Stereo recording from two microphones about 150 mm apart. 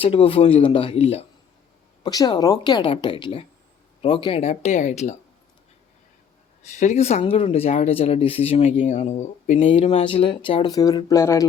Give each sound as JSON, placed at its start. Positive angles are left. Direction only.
{"t": 0.0, "sound": "speech", "side_deg": 35}
{"t": 2.0, "sound": "speech", "side_deg": 25}
{"t": 6.7, "sound": "speech", "side_deg": 50}